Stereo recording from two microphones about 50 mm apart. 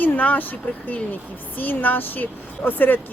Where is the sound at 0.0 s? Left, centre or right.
Left.